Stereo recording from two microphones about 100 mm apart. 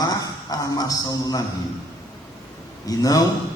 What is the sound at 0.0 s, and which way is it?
A man's voice, 40° left (ahead or behind).